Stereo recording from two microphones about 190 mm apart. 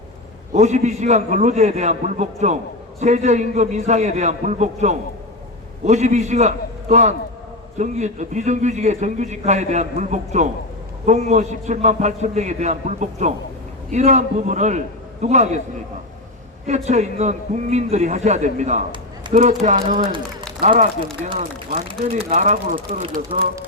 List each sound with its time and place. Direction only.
0.5 s a man's voice: 35° right (ahead or behind)
16.6 s a man's voice: 35° right (ahead or behind)
22.0 s a man's voice: 40° right (ahead or behind)